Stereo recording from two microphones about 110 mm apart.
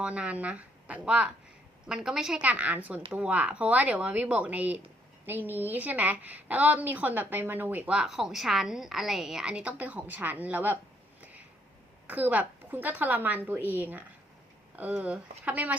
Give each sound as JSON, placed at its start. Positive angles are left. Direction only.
{"t": 0.0, "sound": "a woman's voice", "side_deg": -10}
{"t": 12.0, "sound": "a woman's voice", "side_deg": -15}